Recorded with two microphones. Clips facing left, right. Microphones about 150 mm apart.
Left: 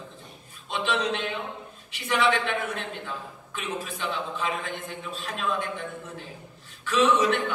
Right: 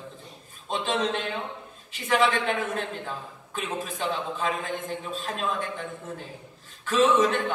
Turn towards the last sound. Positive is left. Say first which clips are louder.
# right 1 dB
turn(degrees=-45)  # may be behind; listen again after turning